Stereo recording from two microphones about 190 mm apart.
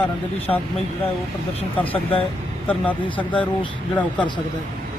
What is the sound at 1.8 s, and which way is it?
Speech, 30° left (ahead or behind).